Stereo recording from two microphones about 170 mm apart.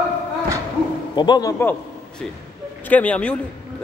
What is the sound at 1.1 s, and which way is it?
Speech, 25° left (ahead or behind).